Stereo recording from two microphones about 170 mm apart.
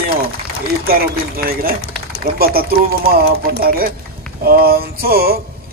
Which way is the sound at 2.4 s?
65° right (ahead or behind).